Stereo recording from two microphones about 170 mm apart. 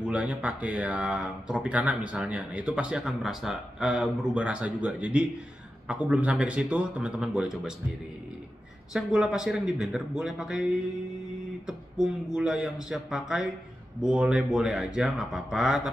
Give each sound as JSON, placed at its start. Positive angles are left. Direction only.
{"t": 0.0, "sound": "speech", "side_deg": -5}
{"t": 8.9, "sound": "speech", "side_deg": -5}